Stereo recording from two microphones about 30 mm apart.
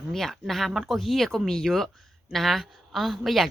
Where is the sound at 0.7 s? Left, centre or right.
Centre.